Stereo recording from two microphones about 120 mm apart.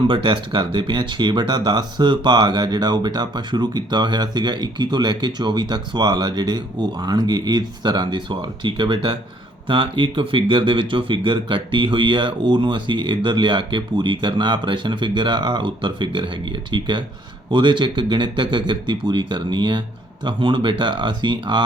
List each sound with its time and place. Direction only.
0.1 s speech: 45° right (ahead or behind)